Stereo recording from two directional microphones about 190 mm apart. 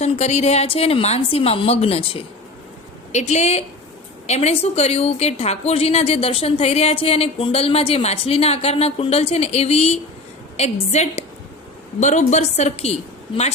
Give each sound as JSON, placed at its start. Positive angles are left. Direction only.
{"t": 0.0, "sound": "a woman's voice", "side_deg": 35}